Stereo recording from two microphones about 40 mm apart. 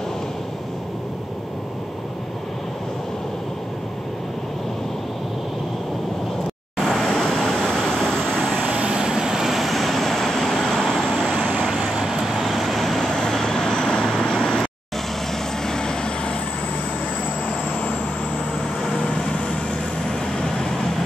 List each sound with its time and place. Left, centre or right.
6.8 s vehicle: centre
8.6 s vehicle: right; by 11.1 s centre
11.9 s vehicle: centre
12.4 s vehicle: centre
13.3 s vehicle: centre